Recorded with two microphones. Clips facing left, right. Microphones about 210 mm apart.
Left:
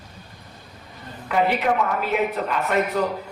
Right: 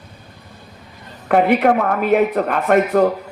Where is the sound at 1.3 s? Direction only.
55° right (ahead or behind).